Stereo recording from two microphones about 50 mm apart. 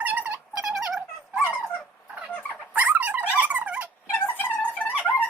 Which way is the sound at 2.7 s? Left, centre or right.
Right.